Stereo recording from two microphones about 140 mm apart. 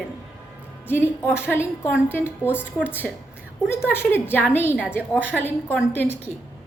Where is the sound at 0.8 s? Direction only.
15° left (ahead or behind).